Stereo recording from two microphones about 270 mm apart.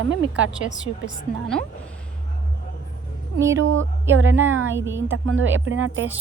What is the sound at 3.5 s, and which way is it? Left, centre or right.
Speech, right.